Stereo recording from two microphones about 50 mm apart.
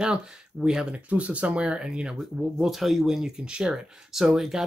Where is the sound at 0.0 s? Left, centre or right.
Centre.